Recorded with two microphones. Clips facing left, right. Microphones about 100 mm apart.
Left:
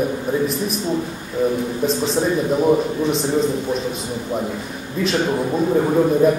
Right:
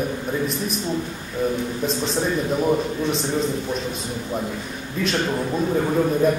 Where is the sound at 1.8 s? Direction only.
Centre (ahead or behind).